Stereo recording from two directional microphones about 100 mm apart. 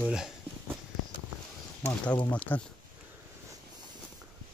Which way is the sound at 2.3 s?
15° left (ahead or behind).